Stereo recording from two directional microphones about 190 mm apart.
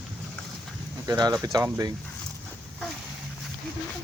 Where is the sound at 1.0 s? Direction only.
20° right (ahead or behind).